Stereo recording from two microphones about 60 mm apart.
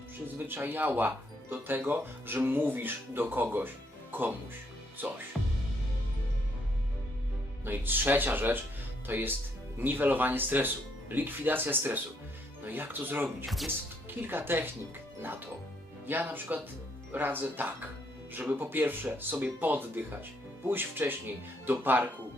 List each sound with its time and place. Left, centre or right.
0.3 s speech: right
7.6 s speech: right
16.0 s speech: right